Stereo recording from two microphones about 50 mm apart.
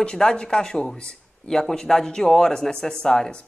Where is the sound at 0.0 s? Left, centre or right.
Centre.